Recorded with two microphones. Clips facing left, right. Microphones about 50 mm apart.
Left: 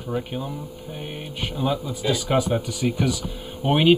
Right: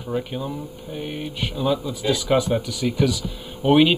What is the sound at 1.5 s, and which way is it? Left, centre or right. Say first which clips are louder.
Speech: right 2 dB; left.